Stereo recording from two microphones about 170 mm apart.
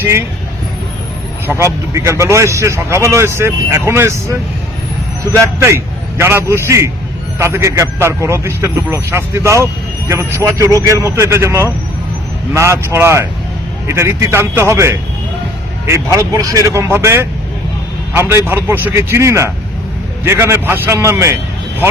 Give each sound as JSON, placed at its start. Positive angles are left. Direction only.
{"t": 0.0, "sound": "speech", "side_deg": -15}
{"t": 1.5, "sound": "a man's voice", "side_deg": -15}